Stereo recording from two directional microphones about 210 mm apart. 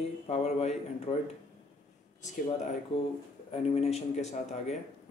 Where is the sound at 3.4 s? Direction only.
30° left (ahead or behind).